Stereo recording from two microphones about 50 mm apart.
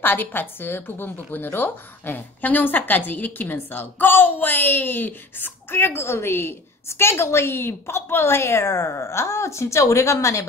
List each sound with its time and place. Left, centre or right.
0.0 s a woman's voice: left
5.9 s a woman's voice: left